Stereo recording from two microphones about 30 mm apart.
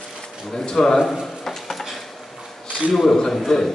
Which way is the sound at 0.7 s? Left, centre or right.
Left.